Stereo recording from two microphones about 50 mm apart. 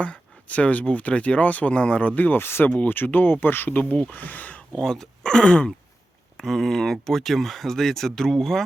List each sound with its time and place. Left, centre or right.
0.0 s speech: left
2.6 s speech: left
2.9 s speech: left
4.8 s speech: centre
6.3 s speech: centre